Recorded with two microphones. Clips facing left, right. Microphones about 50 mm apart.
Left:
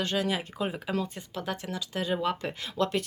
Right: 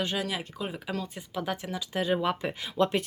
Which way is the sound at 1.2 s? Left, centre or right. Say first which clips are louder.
Right 2 dB; centre.